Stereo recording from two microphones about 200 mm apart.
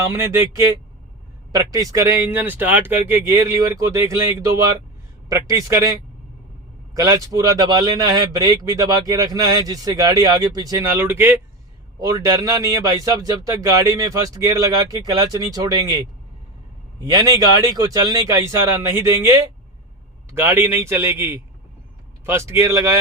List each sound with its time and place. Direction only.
0.0 s speech: 10° right (ahead or behind)
6.9 s speech: 15° right (ahead or behind)